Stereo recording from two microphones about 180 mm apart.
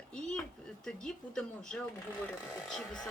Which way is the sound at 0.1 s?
5° left (ahead or behind).